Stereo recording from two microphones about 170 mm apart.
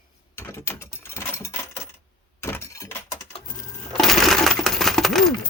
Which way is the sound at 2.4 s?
15° left (ahead or behind).